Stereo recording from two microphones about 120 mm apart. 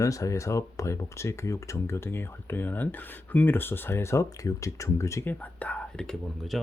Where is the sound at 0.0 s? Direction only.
25° left (ahead or behind).